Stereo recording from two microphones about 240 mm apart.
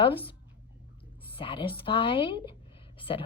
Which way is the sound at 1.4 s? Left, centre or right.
Left.